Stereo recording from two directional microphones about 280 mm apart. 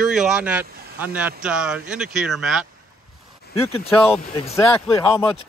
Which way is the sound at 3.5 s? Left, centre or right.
Left.